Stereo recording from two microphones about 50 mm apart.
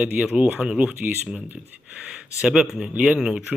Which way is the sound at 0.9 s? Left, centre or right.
Right.